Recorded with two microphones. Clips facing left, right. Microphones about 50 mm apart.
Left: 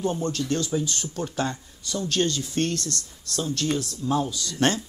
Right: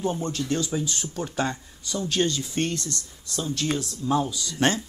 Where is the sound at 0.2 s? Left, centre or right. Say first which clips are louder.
Left 1 dB; centre.